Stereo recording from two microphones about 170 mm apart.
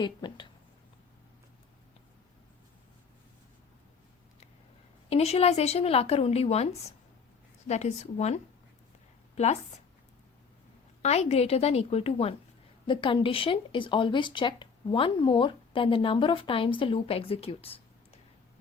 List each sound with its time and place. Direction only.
0.0 s a sound: 25° left (ahead or behind)
5.0 s a woman's voice: 35° left (ahead or behind)
11.0 s speech: 40° left (ahead or behind)